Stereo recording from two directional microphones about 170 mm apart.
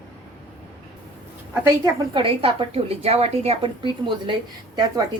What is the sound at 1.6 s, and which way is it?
A woman's voice, 25° right (ahead or behind).